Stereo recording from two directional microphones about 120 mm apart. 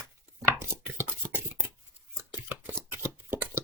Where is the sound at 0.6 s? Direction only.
20° right (ahead or behind).